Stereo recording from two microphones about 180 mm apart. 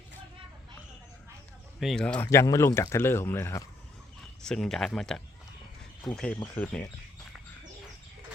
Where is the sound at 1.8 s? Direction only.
Centre (ahead or behind).